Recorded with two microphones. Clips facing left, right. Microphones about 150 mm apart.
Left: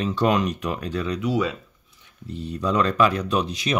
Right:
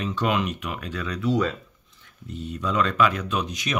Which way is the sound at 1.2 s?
10° left (ahead or behind).